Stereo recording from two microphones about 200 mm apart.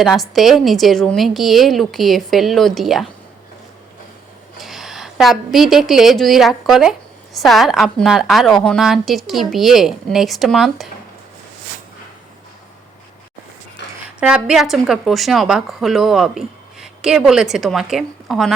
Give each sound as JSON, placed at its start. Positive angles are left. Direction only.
{"t": 0.0, "sound": "a woman's voice", "side_deg": 0}
{"t": 4.6, "sound": "a woman's voice", "side_deg": 0}
{"t": 13.8, "sound": "a sound", "side_deg": 60}
{"t": 14.2, "sound": "a woman's voice", "side_deg": -5}